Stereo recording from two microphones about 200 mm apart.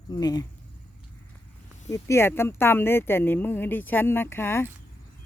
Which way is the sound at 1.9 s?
15° left (ahead or behind).